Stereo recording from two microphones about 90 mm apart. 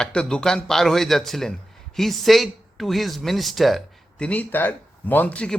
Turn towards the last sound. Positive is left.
turn(degrees=15)  # may be behind; listen again after turning